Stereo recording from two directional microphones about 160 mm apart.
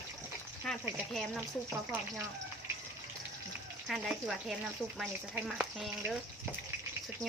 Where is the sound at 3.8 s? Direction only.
Centre (ahead or behind).